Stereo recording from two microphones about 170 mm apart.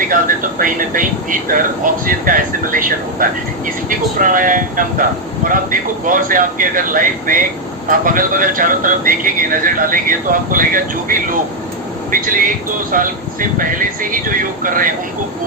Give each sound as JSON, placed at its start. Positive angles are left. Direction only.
{"t": 0.6, "sound": "a man's voice", "side_deg": -55}